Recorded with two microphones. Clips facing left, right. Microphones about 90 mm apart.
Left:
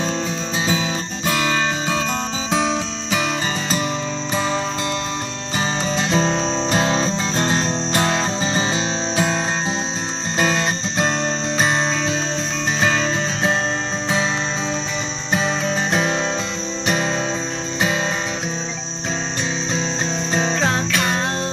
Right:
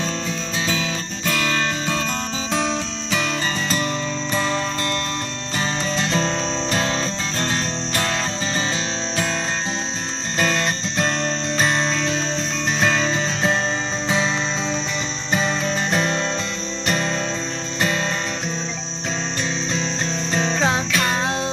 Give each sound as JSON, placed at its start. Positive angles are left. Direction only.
{"t": 0.7, "sound": "music", "side_deg": 20}
{"t": 4.4, "sound": "music", "side_deg": 15}
{"t": 10.3, "sound": "music", "side_deg": 10}
{"t": 15.3, "sound": "music", "side_deg": 5}
{"t": 20.3, "sound": "music", "side_deg": 15}